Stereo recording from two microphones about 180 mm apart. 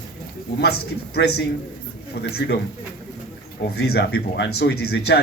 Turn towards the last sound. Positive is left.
turn(degrees=65)  # may be behind; listen again after turning